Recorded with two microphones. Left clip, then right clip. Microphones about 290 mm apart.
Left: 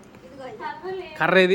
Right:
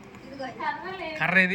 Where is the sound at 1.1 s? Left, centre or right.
Left.